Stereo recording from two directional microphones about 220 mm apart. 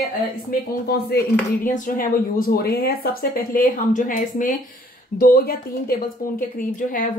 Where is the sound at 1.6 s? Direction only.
35° left (ahead or behind).